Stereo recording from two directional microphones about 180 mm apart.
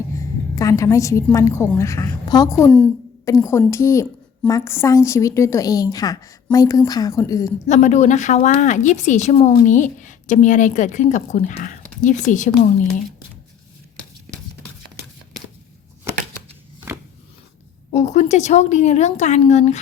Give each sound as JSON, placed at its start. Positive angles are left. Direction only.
{"t": 0.1, "sound": "a woman's voice", "side_deg": 20}
{"t": 7.7, "sound": "a woman's voice", "side_deg": 40}
{"t": 17.9, "sound": "speech", "side_deg": 40}